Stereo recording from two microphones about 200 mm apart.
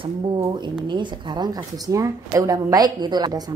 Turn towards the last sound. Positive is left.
turn(degrees=-20)  # may be behind; listen again after turning